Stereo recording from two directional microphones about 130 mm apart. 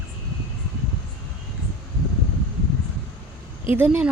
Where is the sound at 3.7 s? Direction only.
15° right (ahead or behind).